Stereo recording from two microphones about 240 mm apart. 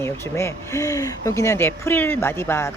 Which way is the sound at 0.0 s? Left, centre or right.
Centre.